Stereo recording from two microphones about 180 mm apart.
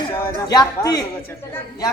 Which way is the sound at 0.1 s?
15° left (ahead or behind).